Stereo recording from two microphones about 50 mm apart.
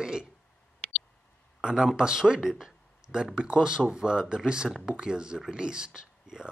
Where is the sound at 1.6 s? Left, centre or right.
Centre.